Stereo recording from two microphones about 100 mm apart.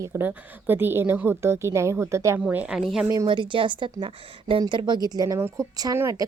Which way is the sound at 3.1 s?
50° right (ahead or behind).